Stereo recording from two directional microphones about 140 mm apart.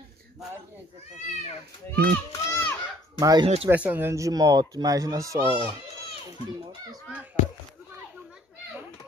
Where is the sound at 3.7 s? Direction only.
15° right (ahead or behind).